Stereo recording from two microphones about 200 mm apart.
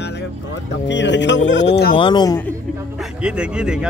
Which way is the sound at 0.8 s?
60° left (ahead or behind).